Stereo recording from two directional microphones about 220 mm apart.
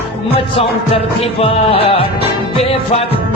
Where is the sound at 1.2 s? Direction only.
25° left (ahead or behind).